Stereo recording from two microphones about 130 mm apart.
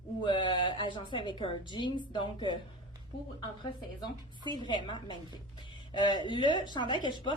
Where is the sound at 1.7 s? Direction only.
35° left (ahead or behind).